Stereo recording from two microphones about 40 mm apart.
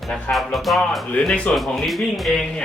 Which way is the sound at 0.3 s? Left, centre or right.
Centre.